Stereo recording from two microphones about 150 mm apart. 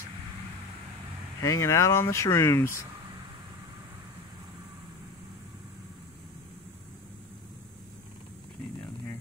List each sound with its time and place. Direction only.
1.4 s speech: 20° left (ahead or behind)